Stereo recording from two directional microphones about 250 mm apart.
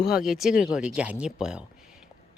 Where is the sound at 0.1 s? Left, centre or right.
Centre.